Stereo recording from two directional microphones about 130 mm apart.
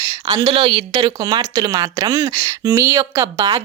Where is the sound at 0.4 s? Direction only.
40° right (ahead or behind).